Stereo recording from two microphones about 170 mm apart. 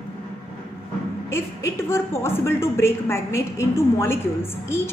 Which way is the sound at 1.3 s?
15° left (ahead or behind).